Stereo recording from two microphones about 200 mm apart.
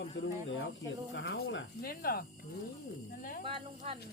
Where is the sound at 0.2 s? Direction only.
65° left (ahead or behind).